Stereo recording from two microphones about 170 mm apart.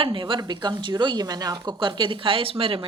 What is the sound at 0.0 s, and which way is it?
Speech, 30° right (ahead or behind).